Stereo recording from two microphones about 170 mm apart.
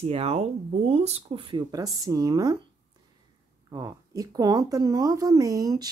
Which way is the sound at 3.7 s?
20° right (ahead or behind).